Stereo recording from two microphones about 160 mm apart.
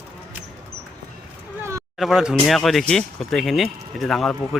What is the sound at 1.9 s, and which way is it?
Speech, centre (ahead or behind).